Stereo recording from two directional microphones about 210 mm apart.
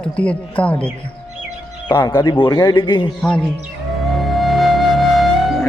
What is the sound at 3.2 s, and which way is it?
Speech, 5° left (ahead or behind).